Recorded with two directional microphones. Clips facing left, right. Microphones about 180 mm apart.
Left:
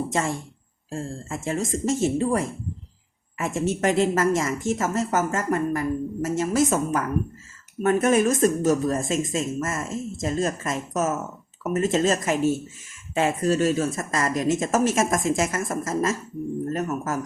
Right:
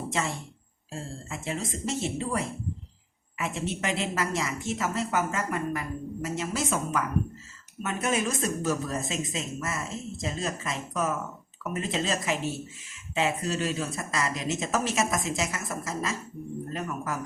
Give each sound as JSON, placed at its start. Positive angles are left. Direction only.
{"t": 0.1, "sound": "speech", "side_deg": 45}